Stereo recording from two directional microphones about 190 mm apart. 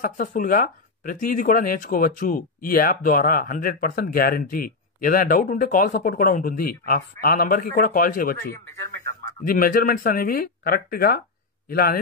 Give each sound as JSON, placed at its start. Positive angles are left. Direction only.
{"t": 0.0, "sound": "speech", "side_deg": 45}